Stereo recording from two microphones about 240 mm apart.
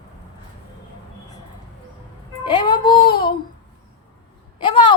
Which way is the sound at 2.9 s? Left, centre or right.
Left.